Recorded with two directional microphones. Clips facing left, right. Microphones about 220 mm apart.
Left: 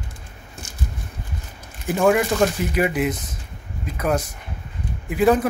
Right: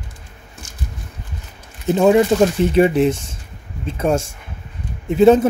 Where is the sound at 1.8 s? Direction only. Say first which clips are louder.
Right 5 dB; 25° right (ahead or behind).